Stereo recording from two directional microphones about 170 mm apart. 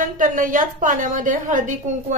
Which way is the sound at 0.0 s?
55° right (ahead or behind).